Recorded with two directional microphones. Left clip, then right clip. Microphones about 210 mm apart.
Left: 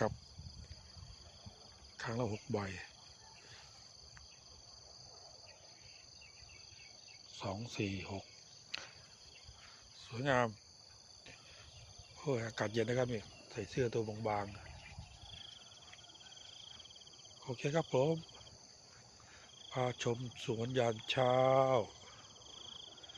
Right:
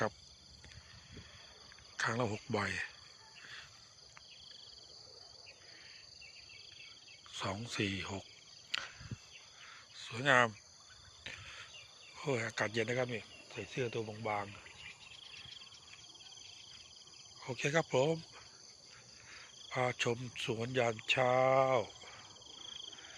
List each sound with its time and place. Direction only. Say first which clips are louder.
2.0 s cricket: right 5 dB; 5° right (ahead or behind)
7.3 s cricket: right 4 dB; 5° right (ahead or behind)
10.0 s speech: right 5 dB; 5° left (ahead or behind)
12.2 s speech: right 2 dB; 5° left (ahead or behind); by 14.6 s 20° left (ahead or behind)
17.4 s cricket: right 3 dB; centre (ahead or behind)
19.7 s speech: right 3 dB; 5° left (ahead or behind)